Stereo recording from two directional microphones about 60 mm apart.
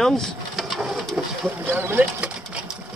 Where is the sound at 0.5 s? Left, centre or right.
Centre.